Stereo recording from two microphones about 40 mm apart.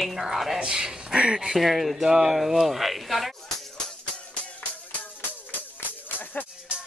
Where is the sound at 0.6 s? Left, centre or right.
Centre.